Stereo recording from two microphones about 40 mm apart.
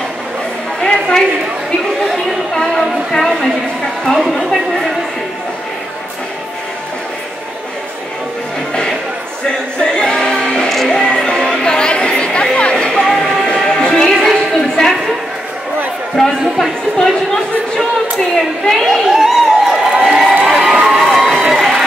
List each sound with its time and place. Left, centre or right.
0.8 s a sound: centre
2.5 s a woman's voice: centre
4.5 s a woman's voice: centre
9.8 s music: centre
11.6 s a sound: left
13.0 s music: centre
13.6 s music: centre
14.0 s a sound: centre
16.2 s a woman's voice: centre
18.9 s crowd: centre